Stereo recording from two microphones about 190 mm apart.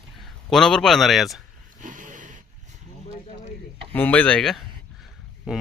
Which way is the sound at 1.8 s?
40° right (ahead or behind).